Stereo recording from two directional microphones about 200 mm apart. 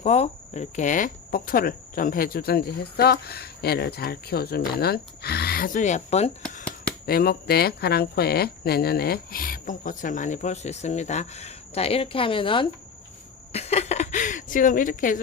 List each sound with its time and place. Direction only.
0.0 s speech: 35° left (ahead or behind)
7.0 s speech: 50° left (ahead or behind)